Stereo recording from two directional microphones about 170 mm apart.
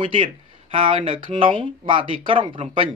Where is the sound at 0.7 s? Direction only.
30° right (ahead or behind).